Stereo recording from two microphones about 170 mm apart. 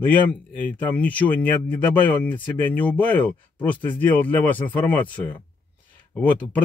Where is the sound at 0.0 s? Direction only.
10° left (ahead or behind).